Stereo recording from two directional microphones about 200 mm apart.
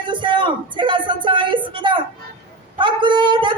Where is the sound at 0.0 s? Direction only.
25° right (ahead or behind).